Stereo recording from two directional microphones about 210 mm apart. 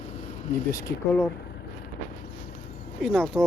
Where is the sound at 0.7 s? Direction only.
15° left (ahead or behind).